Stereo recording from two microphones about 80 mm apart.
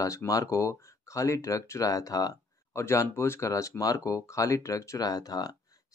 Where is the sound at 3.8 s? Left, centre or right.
Left.